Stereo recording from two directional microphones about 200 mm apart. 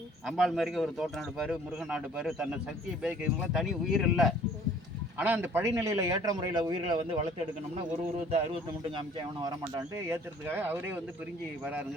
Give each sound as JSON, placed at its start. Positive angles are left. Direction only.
{"t": 0.3, "sound": "a man's voice", "side_deg": 0}
{"t": 7.0, "sound": "a man's voice", "side_deg": -35}
{"t": 9.0, "sound": "a man's voice", "side_deg": -20}